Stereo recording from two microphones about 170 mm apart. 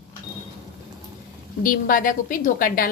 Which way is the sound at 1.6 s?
55° left (ahead or behind).